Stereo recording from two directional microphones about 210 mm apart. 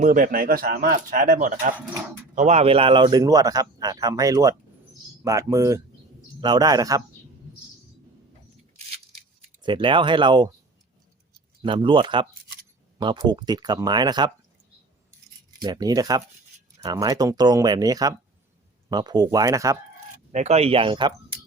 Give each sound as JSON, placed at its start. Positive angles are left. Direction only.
{"t": 0.0, "sound": "a man's voice", "side_deg": -40}
{"t": 9.6, "sound": "speech", "side_deg": -25}
{"t": 11.6, "sound": "speech", "side_deg": -25}
{"t": 15.5, "sound": "a man's voice", "side_deg": -20}
{"t": 20.3, "sound": "speech", "side_deg": -30}